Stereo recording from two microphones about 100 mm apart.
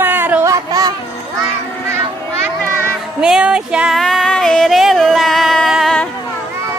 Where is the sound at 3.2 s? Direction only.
5° right (ahead or behind).